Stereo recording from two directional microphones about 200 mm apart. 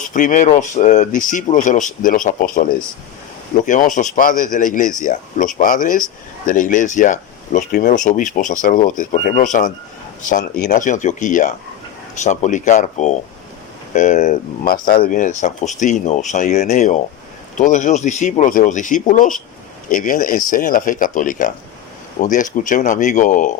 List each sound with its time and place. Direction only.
0.1 s speech: 40° left (ahead or behind)